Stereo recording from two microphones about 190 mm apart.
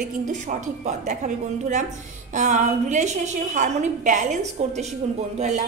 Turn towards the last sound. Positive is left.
turn(degrees=-40)  # may be behind; listen again after turning